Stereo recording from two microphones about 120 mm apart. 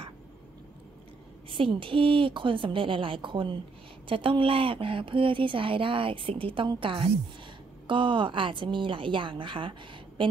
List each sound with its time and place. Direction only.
1.5 s speech: 45° right (ahead or behind)